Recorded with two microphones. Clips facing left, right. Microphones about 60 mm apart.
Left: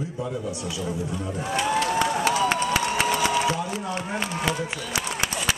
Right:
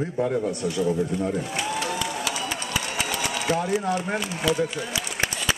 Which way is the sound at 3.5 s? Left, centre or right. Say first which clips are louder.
Right 2 dB; right.